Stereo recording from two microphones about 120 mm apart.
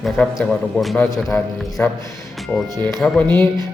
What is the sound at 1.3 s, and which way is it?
Speech, 20° left (ahead or behind).